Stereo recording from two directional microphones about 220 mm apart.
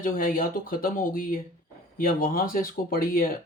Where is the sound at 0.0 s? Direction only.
40° left (ahead or behind).